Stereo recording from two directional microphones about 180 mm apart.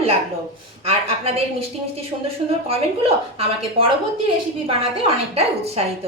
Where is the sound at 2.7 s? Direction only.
35° right (ahead or behind).